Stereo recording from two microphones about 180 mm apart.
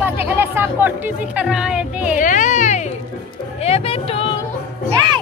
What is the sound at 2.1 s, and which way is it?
Speech, 45° left (ahead or behind).